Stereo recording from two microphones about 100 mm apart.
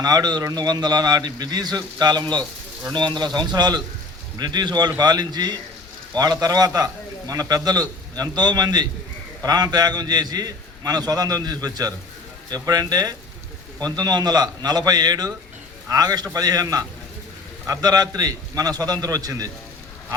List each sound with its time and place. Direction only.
0.0 s a man's voice: 40° right (ahead or behind)